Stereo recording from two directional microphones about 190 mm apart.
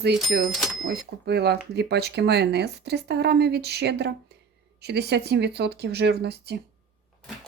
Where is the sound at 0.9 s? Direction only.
60° right (ahead or behind).